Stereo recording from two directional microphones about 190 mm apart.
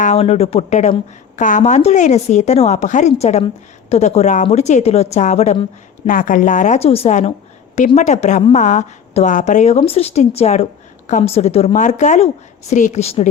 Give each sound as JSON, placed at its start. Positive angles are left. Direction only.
{"t": 0.0, "sound": "a woman's voice", "side_deg": 35}
{"t": 6.1, "sound": "a woman's voice", "side_deg": 45}